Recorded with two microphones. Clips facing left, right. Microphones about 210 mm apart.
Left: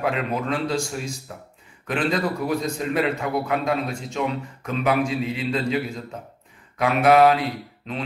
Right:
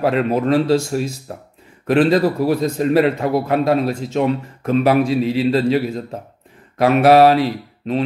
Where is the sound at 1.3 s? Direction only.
45° right (ahead or behind).